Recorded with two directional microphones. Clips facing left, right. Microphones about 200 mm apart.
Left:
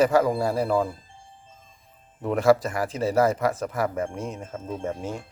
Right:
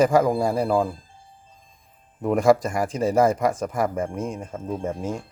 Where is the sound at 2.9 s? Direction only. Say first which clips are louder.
Right 3 dB; 50° right (ahead or behind).